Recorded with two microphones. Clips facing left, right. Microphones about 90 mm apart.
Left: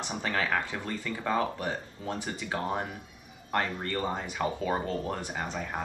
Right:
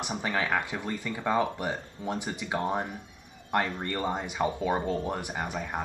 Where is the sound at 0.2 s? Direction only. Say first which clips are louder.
Even; 15° right (ahead or behind).